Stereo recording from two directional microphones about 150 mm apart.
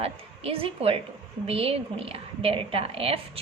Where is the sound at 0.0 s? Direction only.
40° right (ahead or behind).